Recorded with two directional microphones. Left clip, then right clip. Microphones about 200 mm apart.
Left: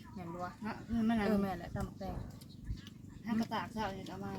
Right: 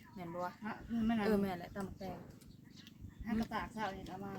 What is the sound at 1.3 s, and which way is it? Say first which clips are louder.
Speech: even; 45° right (ahead or behind).